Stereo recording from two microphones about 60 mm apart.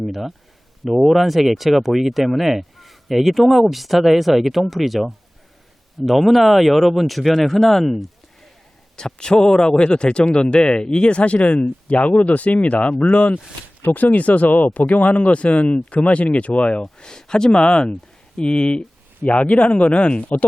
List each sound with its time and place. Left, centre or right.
0.0 s a man's voice: centre; by 16.8 s left
16.8 s a man's voice: centre